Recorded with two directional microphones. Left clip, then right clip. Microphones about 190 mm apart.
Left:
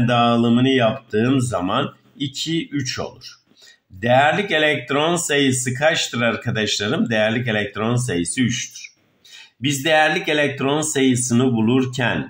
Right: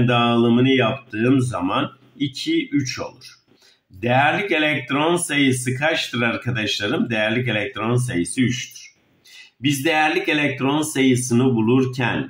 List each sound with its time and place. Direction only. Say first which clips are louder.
0.0 s speech: left 1 dB; 30° left (ahead or behind)